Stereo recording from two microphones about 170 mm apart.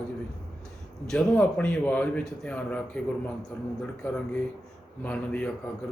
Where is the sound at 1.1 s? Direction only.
5° left (ahead or behind).